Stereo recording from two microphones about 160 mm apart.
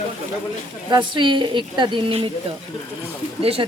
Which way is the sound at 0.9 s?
30° right (ahead or behind).